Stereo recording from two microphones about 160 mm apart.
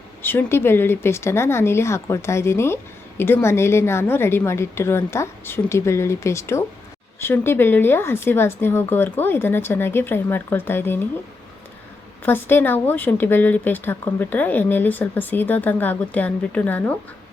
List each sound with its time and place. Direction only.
0.2 s speech: 15° left (ahead or behind)
12.2 s speech: 15° left (ahead or behind)